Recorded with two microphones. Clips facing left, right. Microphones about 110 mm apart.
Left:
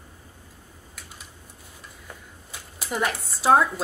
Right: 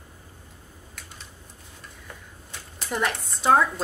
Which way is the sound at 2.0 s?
5° left (ahead or behind).